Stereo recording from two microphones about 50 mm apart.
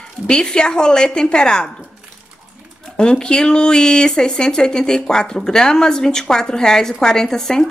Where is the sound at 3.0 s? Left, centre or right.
Centre.